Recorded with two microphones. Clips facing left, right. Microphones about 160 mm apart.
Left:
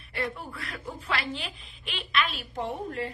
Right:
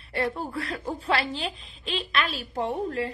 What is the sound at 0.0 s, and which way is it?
A woman's voice, 30° right (ahead or behind).